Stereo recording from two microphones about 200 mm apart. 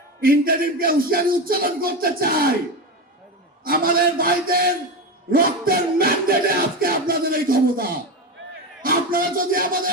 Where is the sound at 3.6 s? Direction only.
45° right (ahead or behind).